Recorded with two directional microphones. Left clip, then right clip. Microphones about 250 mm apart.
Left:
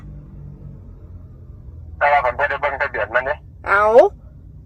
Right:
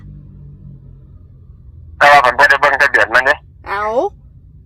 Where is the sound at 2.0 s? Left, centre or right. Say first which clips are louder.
Right 8 dB; right.